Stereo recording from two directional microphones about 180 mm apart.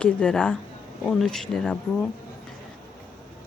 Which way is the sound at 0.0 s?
5° left (ahead or behind).